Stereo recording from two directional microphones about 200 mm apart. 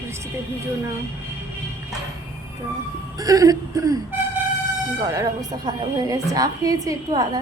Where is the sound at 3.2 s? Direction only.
20° right (ahead or behind).